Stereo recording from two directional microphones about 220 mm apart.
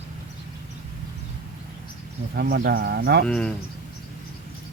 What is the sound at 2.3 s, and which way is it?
Speech, 45° right (ahead or behind).